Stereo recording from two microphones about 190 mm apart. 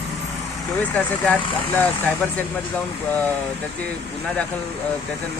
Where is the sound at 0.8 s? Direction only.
10° left (ahead or behind).